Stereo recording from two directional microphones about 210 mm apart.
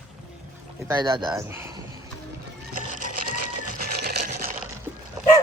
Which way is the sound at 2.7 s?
40° right (ahead or behind).